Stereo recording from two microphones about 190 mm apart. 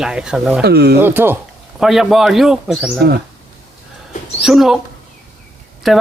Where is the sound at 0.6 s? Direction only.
60° right (ahead or behind).